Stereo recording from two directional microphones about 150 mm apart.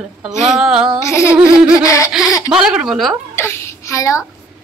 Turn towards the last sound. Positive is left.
turn(degrees=20)  # may be behind; listen again after turning